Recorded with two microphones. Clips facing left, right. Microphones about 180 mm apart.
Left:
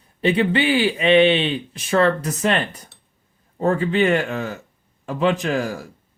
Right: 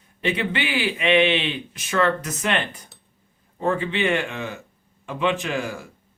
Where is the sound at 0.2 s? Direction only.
35° left (ahead or behind).